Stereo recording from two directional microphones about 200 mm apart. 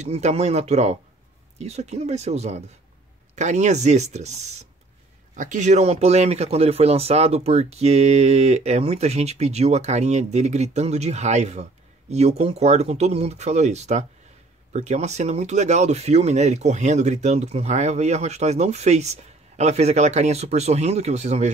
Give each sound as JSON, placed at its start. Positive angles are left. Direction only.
{"t": 0.0, "sound": "speech", "side_deg": -35}